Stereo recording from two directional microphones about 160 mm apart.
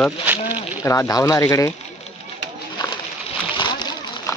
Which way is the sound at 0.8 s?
20° left (ahead or behind).